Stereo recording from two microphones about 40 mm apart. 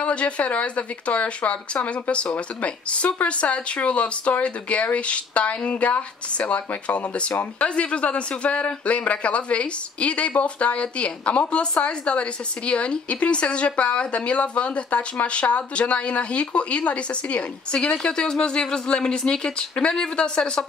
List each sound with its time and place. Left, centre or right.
0.0 s speech: left